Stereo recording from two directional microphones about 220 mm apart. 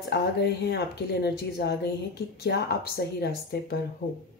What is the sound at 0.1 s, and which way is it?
Speech, 50° left (ahead or behind).